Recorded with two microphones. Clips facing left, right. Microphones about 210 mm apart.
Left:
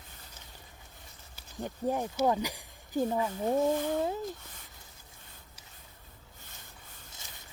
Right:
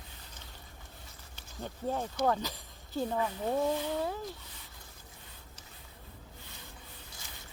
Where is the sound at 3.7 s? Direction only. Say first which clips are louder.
Left 3 dB; 50° left (ahead or behind).